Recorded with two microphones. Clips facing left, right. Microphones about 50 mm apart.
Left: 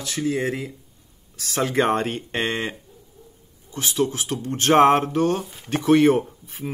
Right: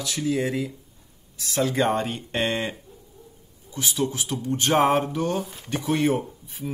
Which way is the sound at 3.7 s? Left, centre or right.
Left.